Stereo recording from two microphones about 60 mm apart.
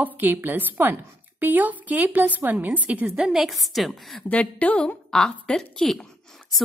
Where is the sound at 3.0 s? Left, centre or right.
Centre.